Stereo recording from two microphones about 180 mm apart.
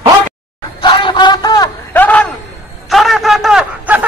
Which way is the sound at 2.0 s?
10° left (ahead or behind).